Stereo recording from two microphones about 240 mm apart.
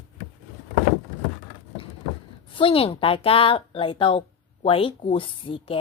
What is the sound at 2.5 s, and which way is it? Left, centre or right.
A woman's voice, left.